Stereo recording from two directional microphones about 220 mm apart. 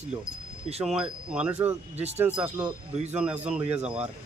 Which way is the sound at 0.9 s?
5° right (ahead or behind).